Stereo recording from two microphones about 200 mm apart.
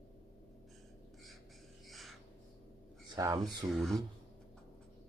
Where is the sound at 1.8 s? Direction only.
Centre (ahead or behind).